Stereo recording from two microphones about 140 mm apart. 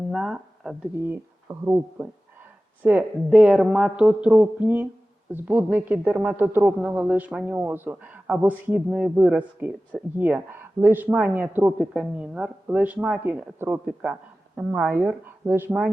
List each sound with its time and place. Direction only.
0.1 s speech: centre (ahead or behind)
1.0 s a man's voice: 15° right (ahead or behind)
2.8 s a man's voice: 5° right (ahead or behind)